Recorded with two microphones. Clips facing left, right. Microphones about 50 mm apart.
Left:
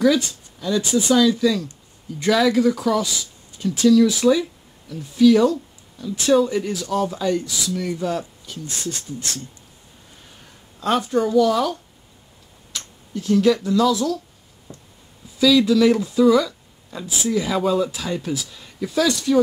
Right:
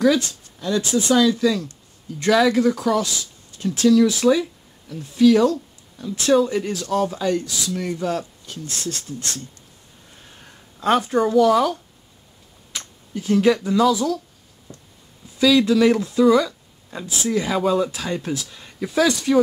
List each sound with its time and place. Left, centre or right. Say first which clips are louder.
0.0 s speech: even; centre
10.8 s a woman's voice: right 2 dB; centre
12.7 s speech: even; centre
15.3 s speech: even; centre
17.0 s speech: even; centre
17.3 s speech: even; centre
18.9 s speech: right 1 dB; right